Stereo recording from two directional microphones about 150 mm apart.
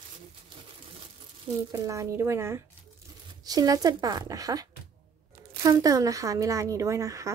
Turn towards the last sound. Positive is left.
turn(degrees=-20)  # may be behind; listen again after turning